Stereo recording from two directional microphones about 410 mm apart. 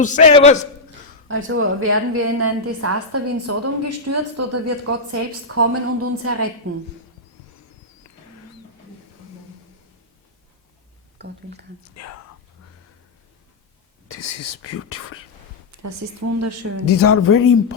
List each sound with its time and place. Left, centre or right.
0.0 s a man's voice: centre
1.3 s a woman's voice: right
12.0 s speech: left
14.1 s speech: left
15.7 s a woman's voice: right
16.8 s speech: left